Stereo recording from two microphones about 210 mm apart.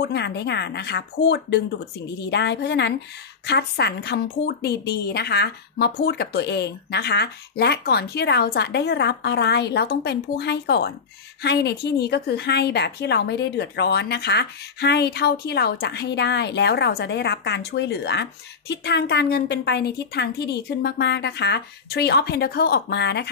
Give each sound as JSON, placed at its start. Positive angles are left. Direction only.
{"t": 0.0, "sound": "a woman's voice", "side_deg": 55}